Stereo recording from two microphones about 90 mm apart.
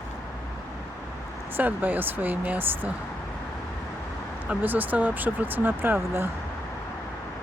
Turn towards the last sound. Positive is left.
turn(degrees=-25)  # may be behind; listen again after turning